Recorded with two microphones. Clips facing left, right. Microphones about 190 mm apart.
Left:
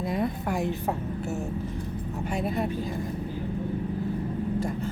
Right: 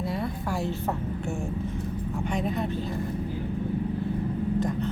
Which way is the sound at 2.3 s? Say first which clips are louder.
Left 1 dB; 10° left (ahead or behind).